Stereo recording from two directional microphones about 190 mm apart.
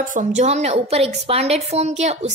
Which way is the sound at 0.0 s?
40° right (ahead or behind).